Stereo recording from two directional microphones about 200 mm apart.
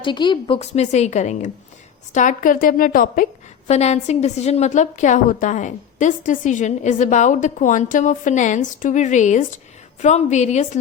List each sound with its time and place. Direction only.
0.0 s a woman's voice: 25° left (ahead or behind); by 3.2 s 45° left (ahead or behind)
3.7 s a woman's voice: 35° left (ahead or behind)